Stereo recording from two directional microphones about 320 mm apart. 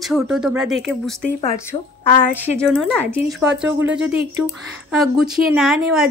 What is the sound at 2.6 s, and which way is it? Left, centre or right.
A woman's voice, centre.